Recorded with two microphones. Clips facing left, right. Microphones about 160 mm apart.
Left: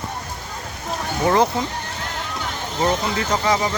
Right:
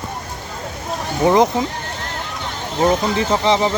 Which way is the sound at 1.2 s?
20° right (ahead or behind).